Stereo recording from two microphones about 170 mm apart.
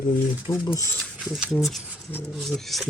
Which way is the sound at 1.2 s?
Centre (ahead or behind).